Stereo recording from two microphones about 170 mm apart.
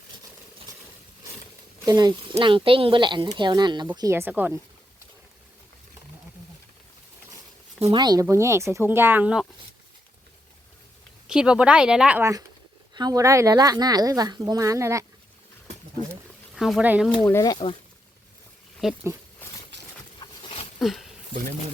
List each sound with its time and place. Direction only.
1.8 s a woman's voice: 25° right (ahead or behind)
7.9 s speech: 25° right (ahead or behind); by 9.5 s 5° right (ahead or behind)
11.3 s speech: 5° right (ahead or behind)
12.9 s a woman's voice: 25° right (ahead or behind)
16.6 s speech: 5° right (ahead or behind)
17.2 s speech: 20° left (ahead or behind)
18.8 s speech: centre (ahead or behind)
19.4 s a sound: 10° left (ahead or behind)
20.1 s a sound: 30° left (ahead or behind)
20.7 s a sound: centre (ahead or behind)